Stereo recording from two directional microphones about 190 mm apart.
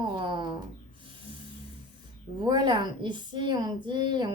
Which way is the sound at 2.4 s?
25° right (ahead or behind).